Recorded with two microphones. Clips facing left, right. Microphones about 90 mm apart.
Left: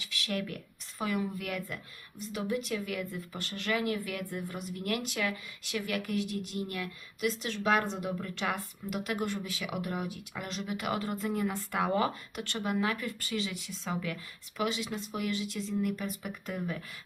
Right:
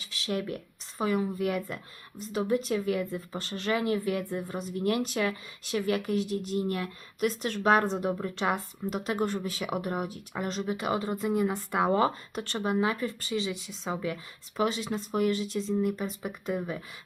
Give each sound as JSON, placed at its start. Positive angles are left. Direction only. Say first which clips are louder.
{"t": 0.0, "sound": "speech", "louder": "right 3 dB", "side_deg": -30}
{"t": 10.8, "sound": "speech", "louder": "right 4 dB", "side_deg": -25}
{"t": 11.9, "sound": "speech", "louder": "right 5 dB", "side_deg": -35}